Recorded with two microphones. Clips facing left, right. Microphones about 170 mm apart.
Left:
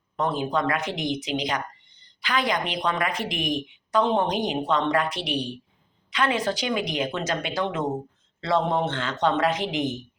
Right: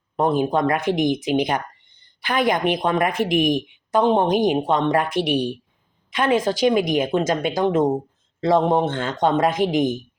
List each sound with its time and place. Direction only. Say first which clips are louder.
0.2 s speech: right 6 dB; 50° right (ahead or behind)